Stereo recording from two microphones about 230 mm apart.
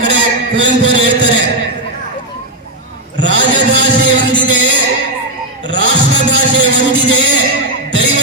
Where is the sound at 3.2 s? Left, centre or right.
Right.